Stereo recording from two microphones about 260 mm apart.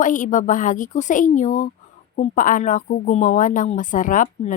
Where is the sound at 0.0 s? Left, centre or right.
Left.